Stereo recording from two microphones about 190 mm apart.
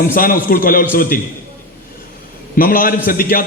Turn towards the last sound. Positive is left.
turn(degrees=50)  # may be behind; listen again after turning